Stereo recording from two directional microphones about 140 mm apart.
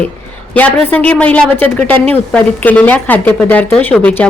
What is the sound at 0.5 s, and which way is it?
Speech, 10° left (ahead or behind).